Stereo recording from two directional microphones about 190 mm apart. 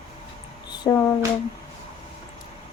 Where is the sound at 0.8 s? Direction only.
20° left (ahead or behind).